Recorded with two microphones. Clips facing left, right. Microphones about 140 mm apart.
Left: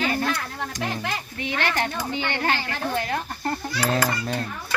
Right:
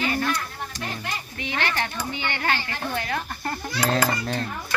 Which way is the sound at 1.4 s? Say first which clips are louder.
Left 2 dB; 40° left (ahead or behind).